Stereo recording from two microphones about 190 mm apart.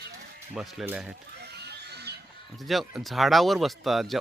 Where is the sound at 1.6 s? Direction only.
60° right (ahead or behind).